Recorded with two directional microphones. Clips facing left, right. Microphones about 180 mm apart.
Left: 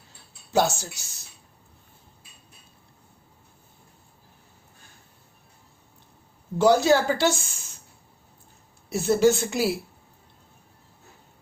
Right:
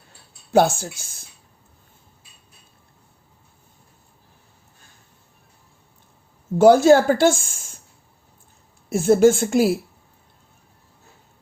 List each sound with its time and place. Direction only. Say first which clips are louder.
0.5 s speech: right 6 dB; 55° right (ahead or behind)
6.6 s speech: right 7 dB; 50° right (ahead or behind)
8.9 s speech: right 5 dB; 50° right (ahead or behind)